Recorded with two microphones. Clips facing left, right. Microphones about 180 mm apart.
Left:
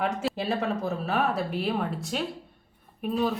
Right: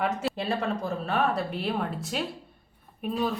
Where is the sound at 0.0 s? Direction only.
Centre (ahead or behind).